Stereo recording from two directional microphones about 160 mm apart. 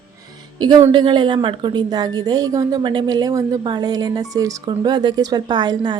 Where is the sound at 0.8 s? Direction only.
35° right (ahead or behind).